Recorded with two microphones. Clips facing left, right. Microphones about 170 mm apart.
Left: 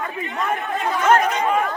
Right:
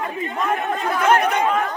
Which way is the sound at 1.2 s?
60° right (ahead or behind).